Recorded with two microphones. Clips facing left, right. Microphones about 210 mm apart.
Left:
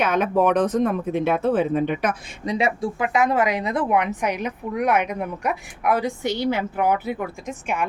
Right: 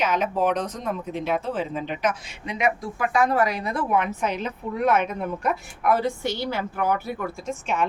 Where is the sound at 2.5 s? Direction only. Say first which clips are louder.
Left 3 dB; 30° left (ahead or behind).